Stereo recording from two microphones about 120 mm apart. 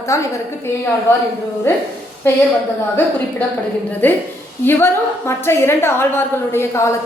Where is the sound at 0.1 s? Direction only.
25° left (ahead or behind).